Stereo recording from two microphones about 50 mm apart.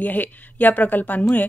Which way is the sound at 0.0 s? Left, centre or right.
Left.